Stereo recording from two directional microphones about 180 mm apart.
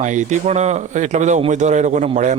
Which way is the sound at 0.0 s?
40° right (ahead or behind).